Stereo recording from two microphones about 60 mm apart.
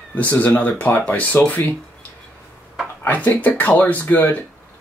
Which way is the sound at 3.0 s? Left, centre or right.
Left.